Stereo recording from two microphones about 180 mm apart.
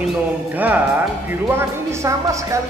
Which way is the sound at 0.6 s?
10° right (ahead or behind).